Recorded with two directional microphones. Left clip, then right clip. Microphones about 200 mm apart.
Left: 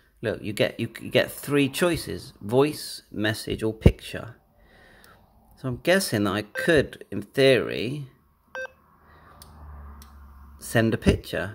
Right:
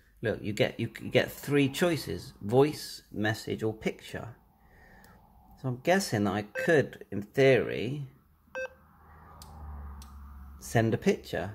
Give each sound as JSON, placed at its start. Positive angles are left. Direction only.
{"t": 0.2, "sound": "speech", "side_deg": 15}
{"t": 5.6, "sound": "speech", "side_deg": 25}
{"t": 10.6, "sound": "speech", "side_deg": 20}